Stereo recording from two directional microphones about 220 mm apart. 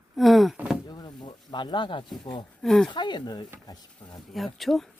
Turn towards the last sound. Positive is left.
turn(degrees=0)  # may be behind; listen again after turning